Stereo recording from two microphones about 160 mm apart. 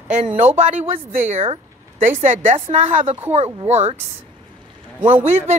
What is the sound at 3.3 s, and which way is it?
Speech, 40° right (ahead or behind).